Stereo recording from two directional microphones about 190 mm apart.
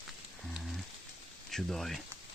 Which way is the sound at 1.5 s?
Centre (ahead or behind).